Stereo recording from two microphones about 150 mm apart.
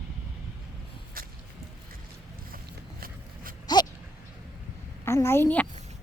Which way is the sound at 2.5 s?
75° right (ahead or behind).